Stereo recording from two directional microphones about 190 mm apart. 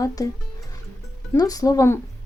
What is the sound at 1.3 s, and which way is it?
Speech, 20° left (ahead or behind).